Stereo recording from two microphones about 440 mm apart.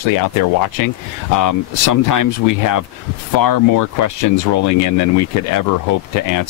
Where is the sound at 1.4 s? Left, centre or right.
Left.